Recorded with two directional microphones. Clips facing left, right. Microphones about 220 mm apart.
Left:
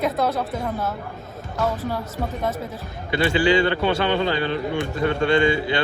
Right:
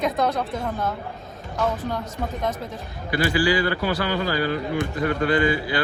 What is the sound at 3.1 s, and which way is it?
A man's voice, 25° left (ahead or behind).